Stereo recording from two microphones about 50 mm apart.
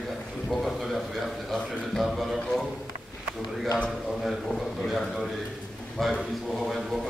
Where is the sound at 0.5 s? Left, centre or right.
Centre.